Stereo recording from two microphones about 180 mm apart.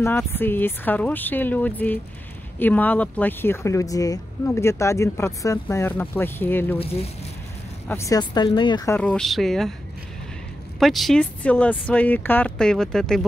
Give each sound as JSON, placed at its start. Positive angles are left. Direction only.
{"t": 0.0, "sound": "speech", "side_deg": 10}
{"t": 6.8, "sound": "speech", "side_deg": 35}
{"t": 7.9, "sound": "speech", "side_deg": 15}
{"t": 8.9, "sound": "speech", "side_deg": 5}
{"t": 10.8, "sound": "speech", "side_deg": 0}